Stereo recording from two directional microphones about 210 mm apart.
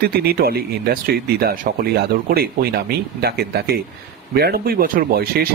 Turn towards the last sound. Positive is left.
turn(degrees=-45)  # may be behind; listen again after turning